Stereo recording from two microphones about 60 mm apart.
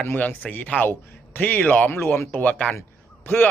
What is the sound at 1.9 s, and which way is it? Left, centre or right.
Speech, left.